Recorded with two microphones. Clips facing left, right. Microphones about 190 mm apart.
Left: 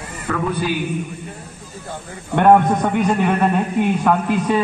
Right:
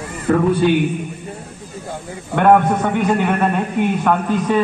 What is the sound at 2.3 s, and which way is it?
Speech, 15° left (ahead or behind).